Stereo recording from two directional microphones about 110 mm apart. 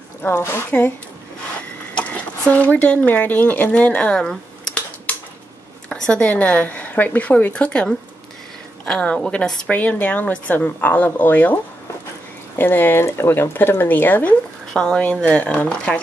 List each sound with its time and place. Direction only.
0.3 s speech: 25° left (ahead or behind)
2.0 s a woman's voice: 10° left (ahead or behind)